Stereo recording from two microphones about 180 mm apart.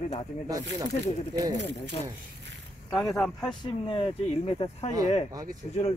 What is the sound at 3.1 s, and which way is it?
Speech, 5° left (ahead or behind).